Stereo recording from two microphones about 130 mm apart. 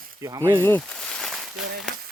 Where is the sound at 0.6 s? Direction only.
15° left (ahead or behind).